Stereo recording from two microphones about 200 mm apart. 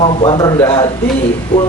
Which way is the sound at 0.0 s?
25° left (ahead or behind).